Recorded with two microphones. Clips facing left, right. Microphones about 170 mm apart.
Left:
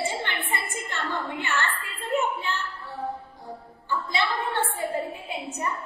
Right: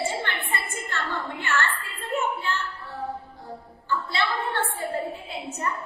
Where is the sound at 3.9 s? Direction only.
15° left (ahead or behind).